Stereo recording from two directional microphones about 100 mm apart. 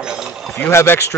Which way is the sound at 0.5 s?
20° left (ahead or behind).